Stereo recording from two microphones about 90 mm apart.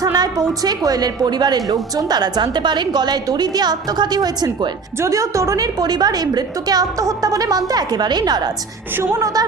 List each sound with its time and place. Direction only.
0.0 s a woman's voice: 45° right (ahead or behind)
4.9 s a woman's voice: 35° right (ahead or behind); by 8.4 s 50° right (ahead or behind)
9.1 s a woman's voice: 35° right (ahead or behind)